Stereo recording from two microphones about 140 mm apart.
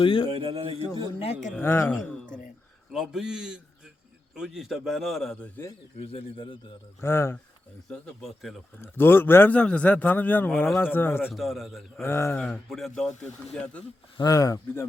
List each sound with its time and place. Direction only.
0.0 s a man's voice: 40° left (ahead or behind)
0.3 s a man's voice: 45° right (ahead or behind)
1.2 s speech: 55° left (ahead or behind)
1.5 s a man's voice: 15° left (ahead or behind)
2.9 s a man's voice: 5° right (ahead or behind)
6.1 s a man's voice: 40° left (ahead or behind)
7.0 s speech: 20° left (ahead or behind)
7.9 s a man's voice: 5° left (ahead or behind)
8.8 s a man's voice: 15° left (ahead or behind)
11.3 s a man's voice: centre (ahead or behind)
12.0 s a man's voice: 15° left (ahead or behind)
12.4 s a man's voice: 5° left (ahead or behind)
14.2 s speech: 25° left (ahead or behind)